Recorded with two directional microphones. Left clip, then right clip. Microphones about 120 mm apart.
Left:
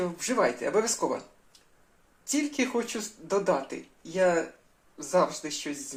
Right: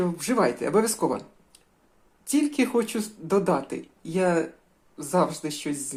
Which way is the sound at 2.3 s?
20° right (ahead or behind).